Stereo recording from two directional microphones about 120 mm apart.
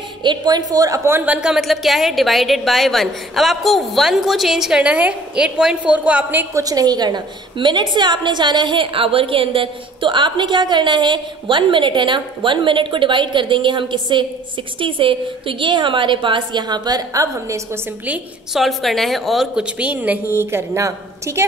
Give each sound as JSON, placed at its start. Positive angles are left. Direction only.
{"t": 0.2, "sound": "a woman's voice", "side_deg": -35}
{"t": 6.5, "sound": "a woman's voice", "side_deg": -30}
{"t": 18.0, "sound": "a woman's voice", "side_deg": -10}
{"t": 18.6, "sound": "a woman's voice", "side_deg": 0}